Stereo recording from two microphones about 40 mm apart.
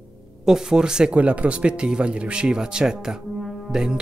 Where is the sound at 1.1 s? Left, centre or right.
Right.